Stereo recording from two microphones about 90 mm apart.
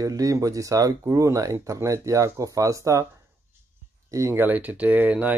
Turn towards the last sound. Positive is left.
turn(degrees=-15)  # may be behind; listen again after turning